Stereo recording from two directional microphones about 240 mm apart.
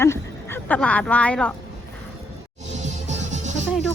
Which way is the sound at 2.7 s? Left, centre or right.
Right.